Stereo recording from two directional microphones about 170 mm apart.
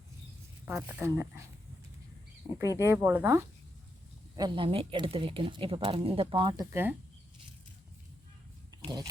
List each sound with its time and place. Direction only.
0.6 s speech: 10° right (ahead or behind)
2.6 s speech: 15° right (ahead or behind)
4.4 s speech: 30° right (ahead or behind)
8.7 s a sound: 20° right (ahead or behind)